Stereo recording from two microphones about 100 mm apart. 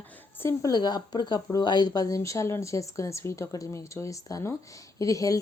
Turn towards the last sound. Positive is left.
turn(degrees=35)  # may be behind; listen again after turning